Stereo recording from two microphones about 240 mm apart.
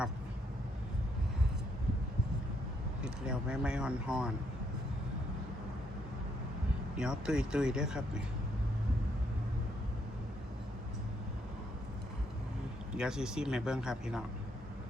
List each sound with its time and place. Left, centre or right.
3.0 s speech: centre
6.9 s speech: centre
12.9 s speech: centre